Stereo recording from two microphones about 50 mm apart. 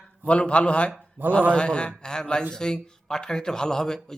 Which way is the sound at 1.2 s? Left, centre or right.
Right.